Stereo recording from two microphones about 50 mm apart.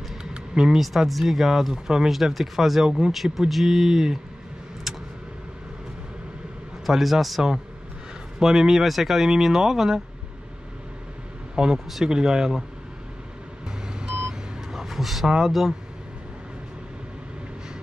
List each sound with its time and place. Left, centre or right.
0.2 s a sound: centre
0.8 s speech: centre
4.9 s vehicle: centre
6.9 s speech: centre
11.5 s a man's voice: centre
13.9 s vehicle: centre
14.7 s speech: centre